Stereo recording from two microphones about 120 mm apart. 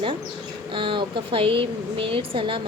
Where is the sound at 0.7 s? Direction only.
45° right (ahead or behind).